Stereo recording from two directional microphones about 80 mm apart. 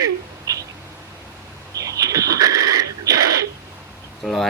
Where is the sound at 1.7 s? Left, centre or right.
Right.